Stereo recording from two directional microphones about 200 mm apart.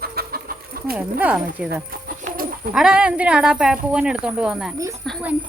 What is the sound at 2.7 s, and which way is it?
Speech, 5° right (ahead or behind).